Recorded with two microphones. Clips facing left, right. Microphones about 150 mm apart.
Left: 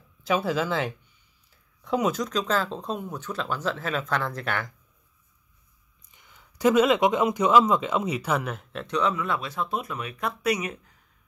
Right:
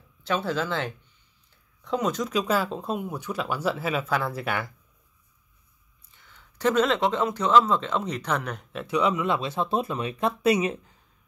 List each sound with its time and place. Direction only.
0.3 s speech: 5° left (ahead or behind)
2.3 s speech: 10° right (ahead or behind)
6.1 s speech: 15° left (ahead or behind)
8.9 s speech: 15° right (ahead or behind)